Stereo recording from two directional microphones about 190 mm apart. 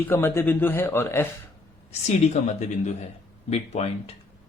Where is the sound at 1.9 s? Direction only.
35° left (ahead or behind).